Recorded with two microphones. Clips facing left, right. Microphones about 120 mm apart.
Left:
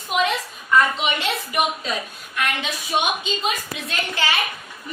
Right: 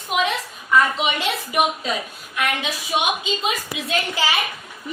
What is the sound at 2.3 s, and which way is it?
A woman's voice, 5° right (ahead or behind).